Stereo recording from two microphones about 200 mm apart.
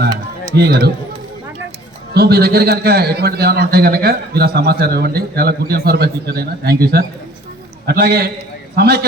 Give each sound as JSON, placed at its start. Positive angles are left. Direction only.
{"t": 0.5, "sound": "a man's voice", "side_deg": -50}
{"t": 2.1, "sound": "a man's voice", "side_deg": -50}